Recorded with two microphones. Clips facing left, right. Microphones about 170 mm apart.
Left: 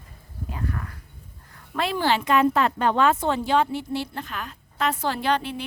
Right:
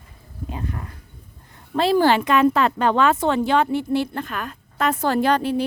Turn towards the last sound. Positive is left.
turn(degrees=-40)  # may be behind; listen again after turning